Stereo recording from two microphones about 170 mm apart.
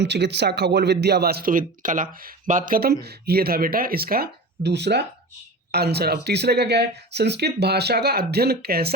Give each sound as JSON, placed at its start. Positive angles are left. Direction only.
{"t": 0.0, "sound": "speech", "side_deg": -90}
{"t": 3.0, "sound": "speech", "side_deg": -70}